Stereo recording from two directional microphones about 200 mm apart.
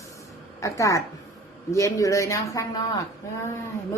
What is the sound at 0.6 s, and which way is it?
Speech, 15° left (ahead or behind).